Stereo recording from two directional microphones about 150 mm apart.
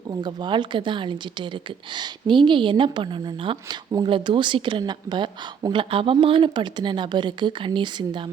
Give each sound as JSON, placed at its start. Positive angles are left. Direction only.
{"t": 0.1, "sound": "speech", "side_deg": -30}